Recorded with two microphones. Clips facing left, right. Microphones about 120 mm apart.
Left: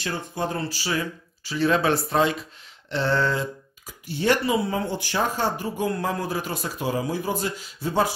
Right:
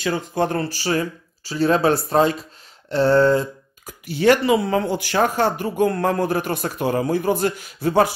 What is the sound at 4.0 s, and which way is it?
Speech, 90° right.